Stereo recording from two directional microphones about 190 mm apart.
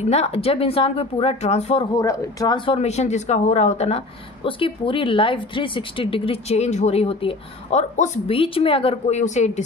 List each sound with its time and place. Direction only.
0.0 s speech: 35° left (ahead or behind)
2.0 s speech: 20° left (ahead or behind); by 9.5 s 40° left (ahead or behind)